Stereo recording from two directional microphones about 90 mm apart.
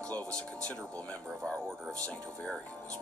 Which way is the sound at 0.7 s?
15° left (ahead or behind).